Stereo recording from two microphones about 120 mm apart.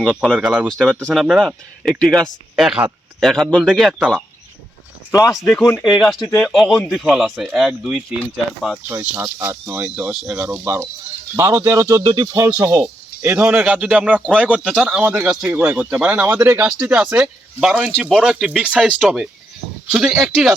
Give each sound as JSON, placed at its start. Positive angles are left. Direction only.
{"t": 0.3, "sound": "speech", "side_deg": -10}
{"t": 0.7, "sound": "speech", "side_deg": 0}
{"t": 5.4, "sound": "speech", "side_deg": 5}
{"t": 8.9, "sound": "speech", "side_deg": -20}
{"t": 12.8, "sound": "a sound", "side_deg": -15}
{"t": 13.4, "sound": "speech", "side_deg": -10}
{"t": 16.9, "sound": "speech", "side_deg": -10}